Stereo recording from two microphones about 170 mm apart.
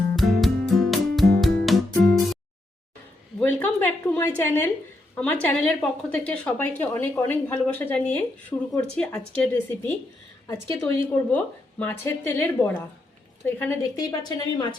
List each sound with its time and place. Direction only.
0.2 s music: centre (ahead or behind)
3.4 s a sound: 10° left (ahead or behind)
4.4 s a woman's voice: 15° left (ahead or behind)
14.1 s speech: 25° left (ahead or behind)